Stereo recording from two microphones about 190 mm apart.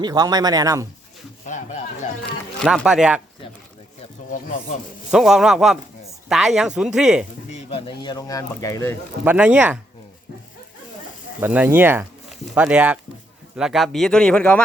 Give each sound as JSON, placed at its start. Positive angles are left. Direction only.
{"t": 0.0, "sound": "speech", "side_deg": -20}
{"t": 2.6, "sound": "speech", "side_deg": 0}
{"t": 4.4, "sound": "speech", "side_deg": 45}
{"t": 5.1, "sound": "speech", "side_deg": -5}
{"t": 7.5, "sound": "speech", "side_deg": 30}
{"t": 9.2, "sound": "speech", "side_deg": -10}
{"t": 11.3, "sound": "speech", "side_deg": -10}